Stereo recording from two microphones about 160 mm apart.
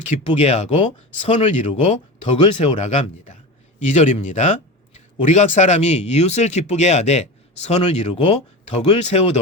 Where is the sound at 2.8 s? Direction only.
50° left (ahead or behind).